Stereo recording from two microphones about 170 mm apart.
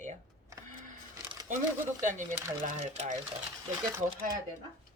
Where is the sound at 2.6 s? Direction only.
40° right (ahead or behind).